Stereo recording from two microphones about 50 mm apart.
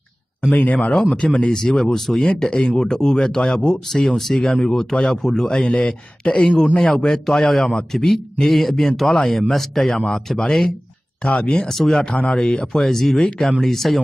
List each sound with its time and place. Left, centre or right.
0.5 s speech: left
0.7 s speech: left
1.5 s a man's voice: centre
2.2 s a man's voice: centre
4.1 s a man's voice: centre; by 6.8 s left
6.8 s a man's voice: centre
11.3 s speech: centre
11.6 s a man's voice: centre
12.0 s a man's voice: left; by 13.9 s centre